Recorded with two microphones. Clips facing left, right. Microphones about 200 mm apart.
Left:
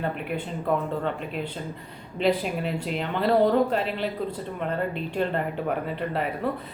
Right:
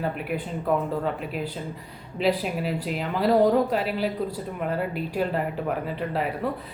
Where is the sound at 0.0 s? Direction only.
5° right (ahead or behind).